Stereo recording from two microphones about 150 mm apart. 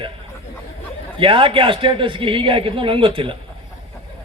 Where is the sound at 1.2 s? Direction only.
35° right (ahead or behind).